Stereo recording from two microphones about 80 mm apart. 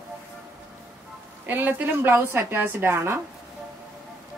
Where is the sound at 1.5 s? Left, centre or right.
Right.